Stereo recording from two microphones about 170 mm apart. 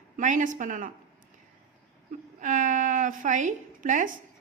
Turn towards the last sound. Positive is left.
turn(degrees=-50)  # may be behind; listen again after turning